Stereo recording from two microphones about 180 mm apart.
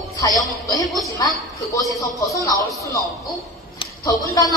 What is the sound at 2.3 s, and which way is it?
Speech, 20° left (ahead or behind).